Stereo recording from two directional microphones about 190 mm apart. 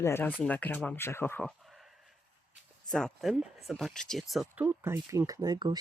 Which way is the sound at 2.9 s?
Centre (ahead or behind).